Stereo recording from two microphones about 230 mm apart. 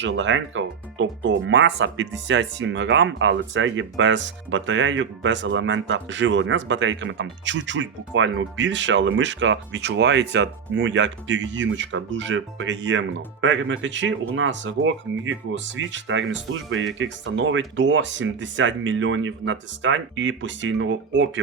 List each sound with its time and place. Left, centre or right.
0.0 s speech: right